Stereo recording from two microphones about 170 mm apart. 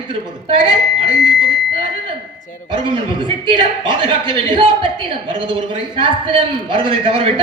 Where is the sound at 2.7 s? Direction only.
30° right (ahead or behind).